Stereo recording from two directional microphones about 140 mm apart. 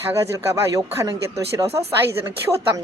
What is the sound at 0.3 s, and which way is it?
A woman's voice, 25° right (ahead or behind).